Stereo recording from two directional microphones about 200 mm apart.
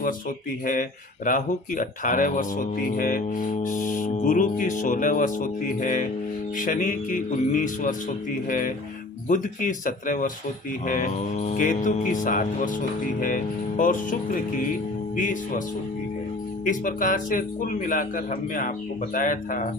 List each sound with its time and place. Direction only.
0.6 s speech: 45° left (ahead or behind)
16.6 s speech: 40° left (ahead or behind)